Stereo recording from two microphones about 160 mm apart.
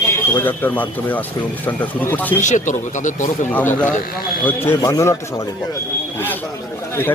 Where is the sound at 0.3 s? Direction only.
10° left (ahead or behind).